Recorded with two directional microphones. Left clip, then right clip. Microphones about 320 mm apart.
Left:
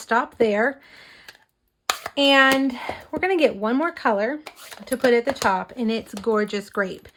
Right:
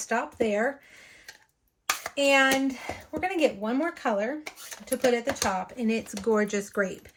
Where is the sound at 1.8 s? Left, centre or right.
Left.